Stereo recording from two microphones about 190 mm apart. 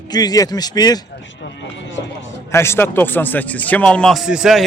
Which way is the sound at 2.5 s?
15° left (ahead or behind).